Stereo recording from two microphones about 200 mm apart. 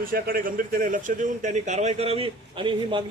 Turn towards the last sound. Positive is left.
turn(degrees=-25)  # may be behind; listen again after turning